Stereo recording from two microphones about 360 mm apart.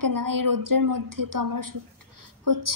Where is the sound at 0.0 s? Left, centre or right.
Right.